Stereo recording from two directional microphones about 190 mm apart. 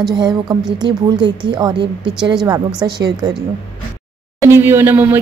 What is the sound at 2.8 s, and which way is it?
Speech, 20° right (ahead or behind).